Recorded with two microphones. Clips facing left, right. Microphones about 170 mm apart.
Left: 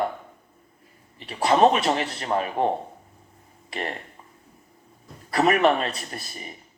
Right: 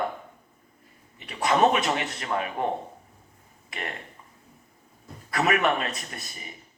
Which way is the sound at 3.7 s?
30° left (ahead or behind).